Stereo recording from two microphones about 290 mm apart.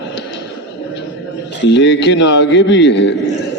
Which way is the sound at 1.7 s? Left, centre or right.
Left.